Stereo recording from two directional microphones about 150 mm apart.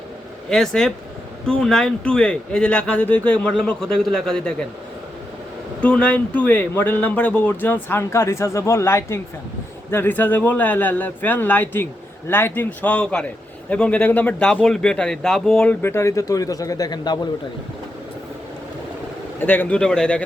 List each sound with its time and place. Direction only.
0.5 s speech: 5° left (ahead or behind)
5.8 s speech: 10° left (ahead or behind)
15.8 s speech: 15° left (ahead or behind)
19.4 s speech: 10° left (ahead or behind)